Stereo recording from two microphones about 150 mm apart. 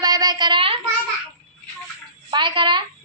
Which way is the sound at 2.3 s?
30° right (ahead or behind).